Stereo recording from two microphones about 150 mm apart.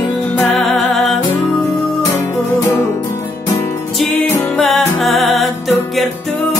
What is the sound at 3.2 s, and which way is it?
Music, 20° left (ahead or behind).